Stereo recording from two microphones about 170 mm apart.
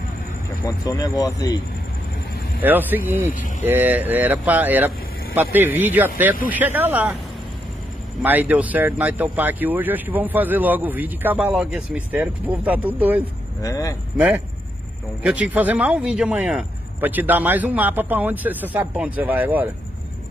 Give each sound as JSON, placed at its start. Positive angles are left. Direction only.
{"t": 0.7, "sound": "speech", "side_deg": 20}
{"t": 2.6, "sound": "speech", "side_deg": -10}
{"t": 8.2, "sound": "speech", "side_deg": -10}
{"t": 13.6, "sound": "speech", "side_deg": 20}
{"t": 15.2, "sound": "speech", "side_deg": -10}